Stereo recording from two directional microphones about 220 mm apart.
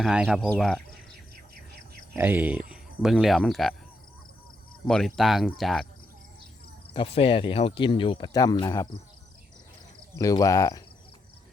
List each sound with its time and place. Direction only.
0.0 s speech: 5° right (ahead or behind)
2.1 s speech: 10° right (ahead or behind)
4.9 s speech: centre (ahead or behind)
6.9 s speech: 25° left (ahead or behind)
10.2 s speech: 15° left (ahead or behind)